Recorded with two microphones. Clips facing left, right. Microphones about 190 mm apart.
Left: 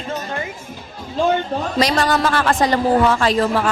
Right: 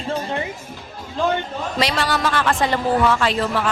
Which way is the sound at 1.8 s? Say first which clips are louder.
Left 4 dB; 40° left (ahead or behind).